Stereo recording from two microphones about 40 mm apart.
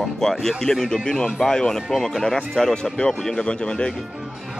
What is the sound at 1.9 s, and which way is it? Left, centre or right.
Speech, centre.